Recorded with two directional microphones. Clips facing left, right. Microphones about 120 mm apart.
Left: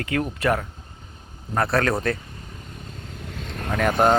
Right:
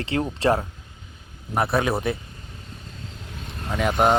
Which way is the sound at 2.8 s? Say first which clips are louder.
Left 2 dB; 50° left (ahead or behind).